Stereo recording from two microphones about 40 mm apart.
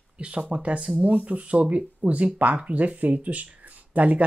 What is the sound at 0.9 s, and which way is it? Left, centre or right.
Speech, right.